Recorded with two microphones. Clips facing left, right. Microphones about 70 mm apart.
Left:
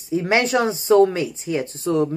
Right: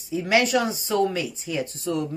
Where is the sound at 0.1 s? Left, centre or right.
Left.